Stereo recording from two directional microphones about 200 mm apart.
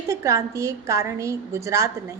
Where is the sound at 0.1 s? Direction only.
15° right (ahead or behind).